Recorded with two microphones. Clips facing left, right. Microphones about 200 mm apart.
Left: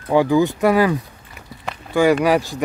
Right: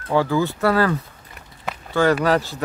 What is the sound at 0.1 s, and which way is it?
Speech, 15° left (ahead or behind).